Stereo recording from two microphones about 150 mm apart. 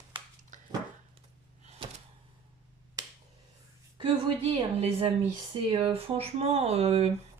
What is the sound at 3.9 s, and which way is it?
Speech, 35° right (ahead or behind).